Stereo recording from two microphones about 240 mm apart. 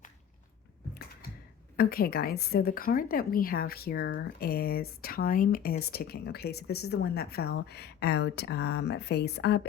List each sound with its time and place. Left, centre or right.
1.7 s a woman's voice: left